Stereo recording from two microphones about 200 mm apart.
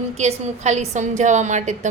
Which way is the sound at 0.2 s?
35° right (ahead or behind).